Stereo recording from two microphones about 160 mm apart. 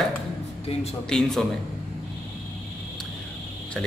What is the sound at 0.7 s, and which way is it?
Speech, 35° left (ahead or behind).